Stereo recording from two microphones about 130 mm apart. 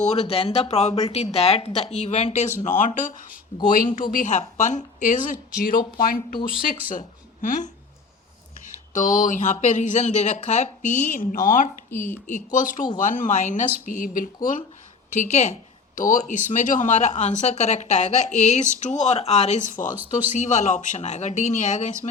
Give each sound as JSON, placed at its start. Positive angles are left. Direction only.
{"t": 0.0, "sound": "speech", "side_deg": 60}
{"t": 2.6, "sound": "a woman's voice", "side_deg": 75}
{"t": 8.6, "sound": "speech", "side_deg": 75}
{"t": 11.9, "sound": "a woman's voice", "side_deg": 15}
{"t": 12.3, "sound": "speech", "side_deg": 90}
{"t": 13.0, "sound": "a woman's voice", "side_deg": 80}
{"t": 15.1, "sound": "speech", "side_deg": 65}
{"t": 16.0, "sound": "speech", "side_deg": 85}
{"t": 20.3, "sound": "speech", "side_deg": 65}